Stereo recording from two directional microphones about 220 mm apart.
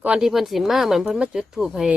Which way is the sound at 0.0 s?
5° right (ahead or behind).